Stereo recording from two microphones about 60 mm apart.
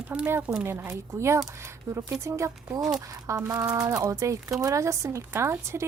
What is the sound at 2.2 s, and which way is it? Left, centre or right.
Speech, right.